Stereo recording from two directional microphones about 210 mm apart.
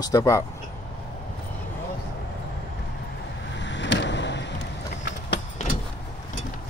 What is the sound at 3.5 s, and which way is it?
Vehicle, 60° left (ahead or behind).